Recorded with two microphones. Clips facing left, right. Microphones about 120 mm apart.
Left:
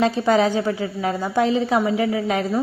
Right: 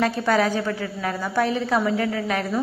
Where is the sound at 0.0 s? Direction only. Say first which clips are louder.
Left 3 dB; 20° left (ahead or behind).